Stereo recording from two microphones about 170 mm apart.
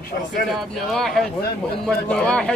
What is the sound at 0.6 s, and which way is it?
A man's voice, centre (ahead or behind).